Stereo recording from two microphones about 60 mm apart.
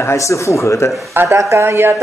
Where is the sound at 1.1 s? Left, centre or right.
Right.